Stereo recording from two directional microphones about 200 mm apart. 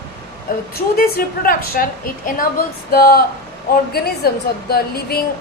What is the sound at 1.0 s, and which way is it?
Speech, 45° left (ahead or behind).